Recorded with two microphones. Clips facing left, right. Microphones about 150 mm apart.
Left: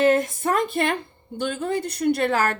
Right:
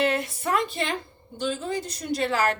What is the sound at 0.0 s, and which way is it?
A woman's voice, 45° left (ahead or behind).